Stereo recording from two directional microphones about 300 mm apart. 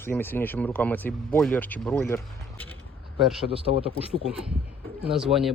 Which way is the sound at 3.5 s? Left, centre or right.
Centre.